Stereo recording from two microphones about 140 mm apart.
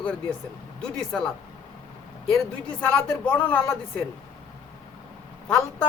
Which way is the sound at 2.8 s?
10° left (ahead or behind).